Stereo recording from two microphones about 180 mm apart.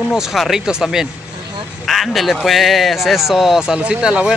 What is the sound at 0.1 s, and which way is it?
Speech, centre (ahead or behind).